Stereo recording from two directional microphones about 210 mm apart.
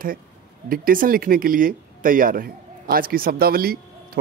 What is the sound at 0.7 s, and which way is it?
Speech, 40° right (ahead or behind).